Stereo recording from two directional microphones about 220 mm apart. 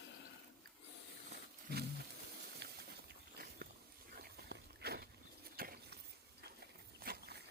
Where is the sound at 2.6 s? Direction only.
50° right (ahead or behind).